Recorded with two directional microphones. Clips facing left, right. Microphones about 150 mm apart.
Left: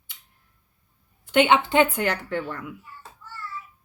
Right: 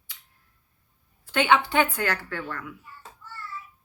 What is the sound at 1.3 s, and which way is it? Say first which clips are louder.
Speech: left 3 dB; 20° left (ahead or behind).